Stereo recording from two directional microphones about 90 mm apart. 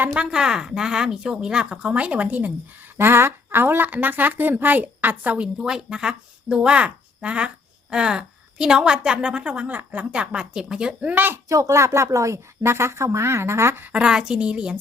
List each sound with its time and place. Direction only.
0.1 s a woman's voice: 10° right (ahead or behind)
11.1 s a woman's voice: 25° right (ahead or behind)
11.4 s speech: 35° right (ahead or behind)
13.9 s speech: 10° right (ahead or behind)